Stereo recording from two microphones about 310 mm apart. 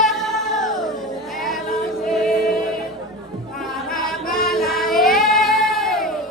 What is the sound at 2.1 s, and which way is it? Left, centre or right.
Music, centre.